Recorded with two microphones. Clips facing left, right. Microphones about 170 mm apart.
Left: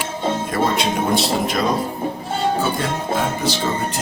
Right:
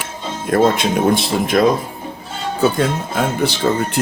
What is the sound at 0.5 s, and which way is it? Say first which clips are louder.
Speech: right 9 dB; 50° right (ahead or behind).